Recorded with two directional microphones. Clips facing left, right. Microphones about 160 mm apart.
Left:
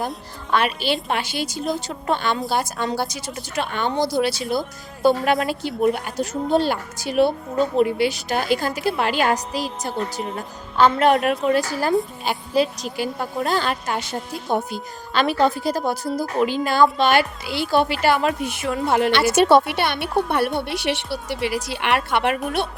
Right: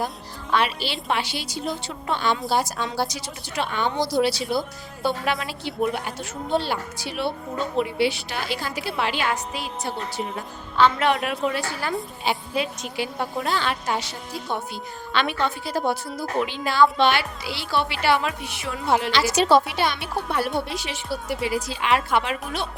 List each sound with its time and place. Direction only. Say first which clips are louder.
0.5 s a woman's voice: left 3 dB; 50° left (ahead or behind)
2.4 s a woman's voice: left 1 dB; centre (ahead or behind)
3.1 s a woman's voice: left 3 dB; 50° left (ahead or behind)